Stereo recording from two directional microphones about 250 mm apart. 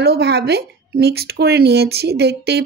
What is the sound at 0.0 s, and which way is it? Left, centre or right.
A woman's voice, right.